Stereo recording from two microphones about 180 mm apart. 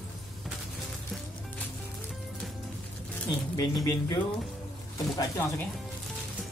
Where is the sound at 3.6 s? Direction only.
20° left (ahead or behind).